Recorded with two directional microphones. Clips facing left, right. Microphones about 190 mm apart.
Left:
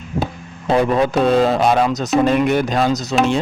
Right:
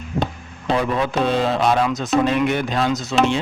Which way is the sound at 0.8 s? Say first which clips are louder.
Left 6 dB; 40° left (ahead or behind).